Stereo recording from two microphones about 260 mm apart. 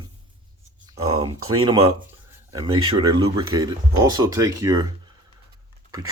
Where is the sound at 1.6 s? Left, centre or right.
Centre.